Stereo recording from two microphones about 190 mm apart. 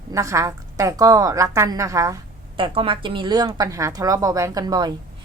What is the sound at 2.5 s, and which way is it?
A woman's voice, 30° right (ahead or behind).